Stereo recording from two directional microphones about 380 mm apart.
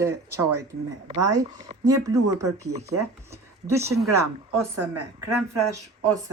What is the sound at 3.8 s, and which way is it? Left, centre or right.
Speech, centre.